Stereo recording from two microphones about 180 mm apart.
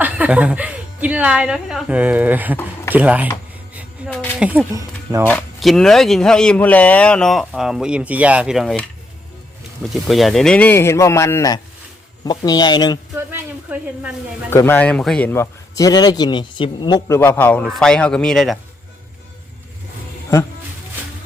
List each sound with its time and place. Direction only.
0.0 s speech: 10° right (ahead or behind)
4.0 s a sound: 5° right (ahead or behind)
4.4 s speech: 10° right (ahead or behind)
5.3 s speech: 5° left (ahead or behind)
9.8 s a man's voice: centre (ahead or behind); by 13.0 s 25° left (ahead or behind)
13.1 s a sound: 10° right (ahead or behind)
14.5 s a man's voice: 10° left (ahead or behind)
17.2 s speech: 10° left (ahead or behind)